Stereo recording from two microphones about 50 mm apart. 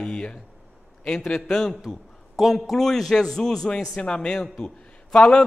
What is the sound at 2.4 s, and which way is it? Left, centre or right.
A man's voice, centre.